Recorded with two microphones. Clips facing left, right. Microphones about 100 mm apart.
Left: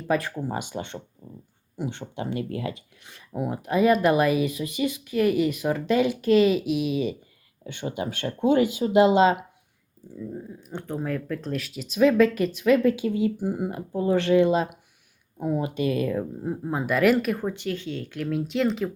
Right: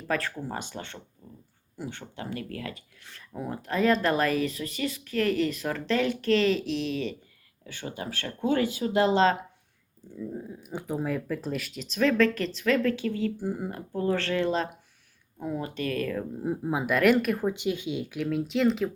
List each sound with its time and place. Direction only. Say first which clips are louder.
0.1 s speech: left 5 dB; 15° left (ahead or behind)
7.6 s speech: left 6 dB; 20° left (ahead or behind)
10.2 s speech: left 1 dB; 5° right (ahead or behind); by 16.2 s 15° left (ahead or behind)
16.4 s speech: even; 5° right (ahead or behind)
17.4 s speech: right 1 dB; 15° right (ahead or behind)
18.2 s speech: left 1 dB; centre (ahead or behind)